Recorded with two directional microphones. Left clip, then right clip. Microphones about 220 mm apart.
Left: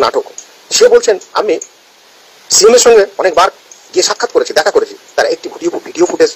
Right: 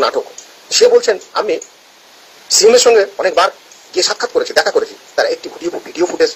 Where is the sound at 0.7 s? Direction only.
35° left (ahead or behind).